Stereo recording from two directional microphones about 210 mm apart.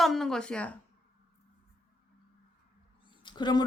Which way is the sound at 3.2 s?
20° left (ahead or behind).